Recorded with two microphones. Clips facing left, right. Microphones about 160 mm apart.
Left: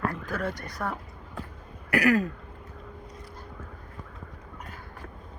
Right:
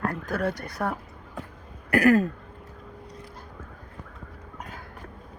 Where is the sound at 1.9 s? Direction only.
50° right (ahead or behind).